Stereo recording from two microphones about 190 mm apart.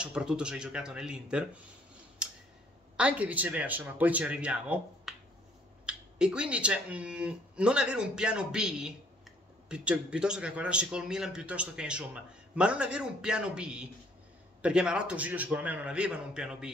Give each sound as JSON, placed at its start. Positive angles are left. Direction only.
{"t": 0.0, "sound": "a man's voice", "side_deg": -5}
{"t": 2.2, "sound": "tick", "side_deg": -5}
{"t": 3.0, "sound": "a man's voice", "side_deg": -5}